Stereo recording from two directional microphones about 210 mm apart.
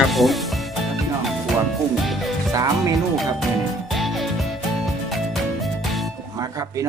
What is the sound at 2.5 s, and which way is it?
Music, 15° right (ahead or behind).